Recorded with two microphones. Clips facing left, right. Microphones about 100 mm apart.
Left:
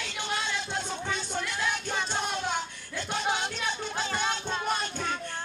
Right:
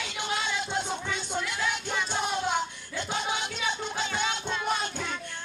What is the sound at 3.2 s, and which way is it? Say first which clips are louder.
Music: left 1 dB; 50° left (ahead or behind).